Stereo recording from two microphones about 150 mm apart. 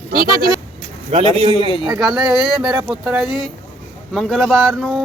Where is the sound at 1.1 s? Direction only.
45° right (ahead or behind).